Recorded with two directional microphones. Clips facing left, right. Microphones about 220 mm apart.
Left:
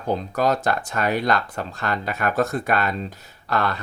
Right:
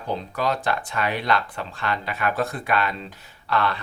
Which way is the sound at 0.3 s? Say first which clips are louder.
Left 3 dB; 45° left (ahead or behind).